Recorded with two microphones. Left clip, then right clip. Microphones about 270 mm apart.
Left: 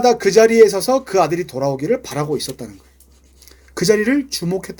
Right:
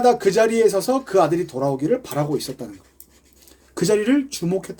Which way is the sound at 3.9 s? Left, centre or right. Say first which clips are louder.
Left 3 dB; left.